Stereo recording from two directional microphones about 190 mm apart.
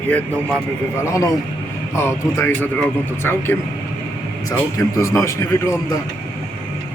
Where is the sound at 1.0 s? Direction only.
15° left (ahead or behind).